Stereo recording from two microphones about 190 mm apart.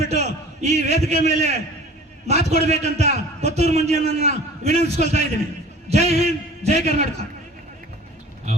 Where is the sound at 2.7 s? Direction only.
35° right (ahead or behind).